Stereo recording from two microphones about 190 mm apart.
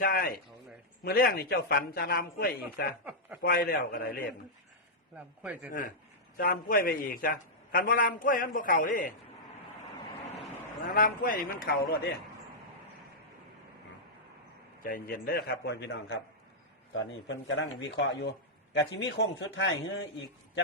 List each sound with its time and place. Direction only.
0.0 s a man's voice: 50° left (ahead or behind)
3.0 s a man's voice: 10° right (ahead or behind)
3.4 s a man's voice: 50° left (ahead or behind)
5.1 s a man's voice: 5° right (ahead or behind)
5.6 s a man's voice: 45° left (ahead or behind)
10.9 s a man's voice: 45° left (ahead or behind)
14.8 s a man's voice: 50° left (ahead or behind); by 19.6 s 65° left (ahead or behind)